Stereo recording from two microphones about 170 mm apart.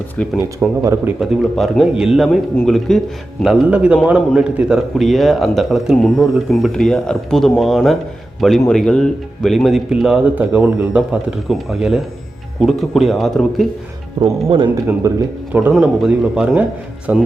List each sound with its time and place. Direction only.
0.4 s speech: 15° right (ahead or behind)
1.2 s speech: centre (ahead or behind)
14.2 s speech: 25° right (ahead or behind)
15.7 s speech: 5° right (ahead or behind)